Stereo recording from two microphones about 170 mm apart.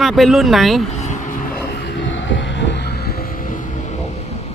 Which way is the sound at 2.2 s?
90° left.